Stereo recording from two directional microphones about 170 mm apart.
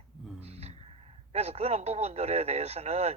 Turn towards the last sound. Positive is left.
turn(degrees=-40)  # may be behind; listen again after turning